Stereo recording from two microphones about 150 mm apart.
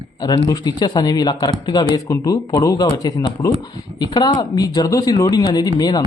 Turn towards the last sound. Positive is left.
turn(degrees=25)  # may be behind; listen again after turning